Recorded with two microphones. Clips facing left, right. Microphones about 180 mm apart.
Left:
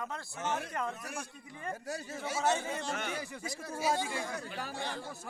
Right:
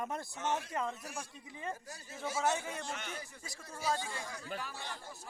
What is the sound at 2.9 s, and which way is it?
A man's voice, 70° left (ahead or behind).